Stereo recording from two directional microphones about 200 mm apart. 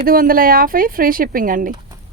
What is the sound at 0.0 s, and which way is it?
Speech, 45° right (ahead or behind).